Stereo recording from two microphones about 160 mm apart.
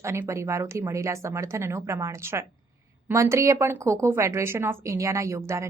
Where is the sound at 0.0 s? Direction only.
15° right (ahead or behind).